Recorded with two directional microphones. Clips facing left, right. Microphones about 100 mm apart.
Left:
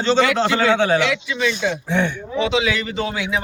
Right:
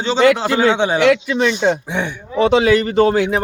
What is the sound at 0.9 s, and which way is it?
Speech, 55° right (ahead or behind).